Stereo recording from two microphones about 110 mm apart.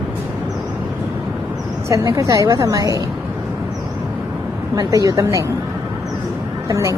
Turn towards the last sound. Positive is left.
turn(degrees=-30)  # may be behind; listen again after turning